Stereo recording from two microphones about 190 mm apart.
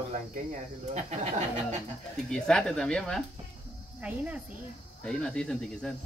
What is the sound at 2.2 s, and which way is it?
Speech, 5° left (ahead or behind).